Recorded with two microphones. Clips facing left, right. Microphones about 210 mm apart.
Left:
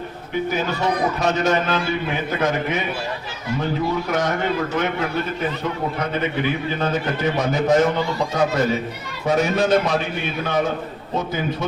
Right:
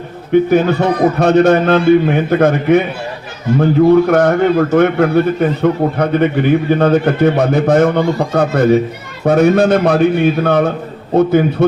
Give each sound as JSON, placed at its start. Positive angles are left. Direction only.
{"t": 0.5, "sound": "a man's voice", "side_deg": -55}